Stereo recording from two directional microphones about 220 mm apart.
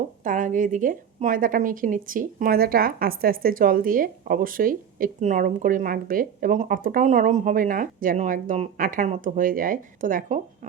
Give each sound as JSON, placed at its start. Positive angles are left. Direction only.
{"t": 0.3, "sound": "speech", "side_deg": -35}